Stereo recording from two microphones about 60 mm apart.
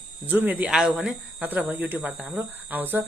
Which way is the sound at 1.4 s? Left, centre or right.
Right.